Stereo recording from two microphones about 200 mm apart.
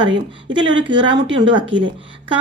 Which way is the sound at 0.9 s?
25° right (ahead or behind).